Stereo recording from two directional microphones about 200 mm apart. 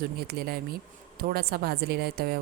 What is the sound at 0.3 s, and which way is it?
A woman's voice, 50° right (ahead or behind).